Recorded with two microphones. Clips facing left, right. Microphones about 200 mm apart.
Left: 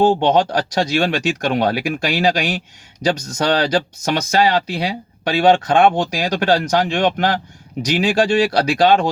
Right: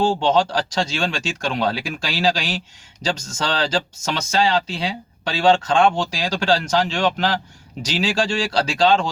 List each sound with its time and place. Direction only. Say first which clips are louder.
0.3 s speech: left 3 dB; 60° left (ahead or behind)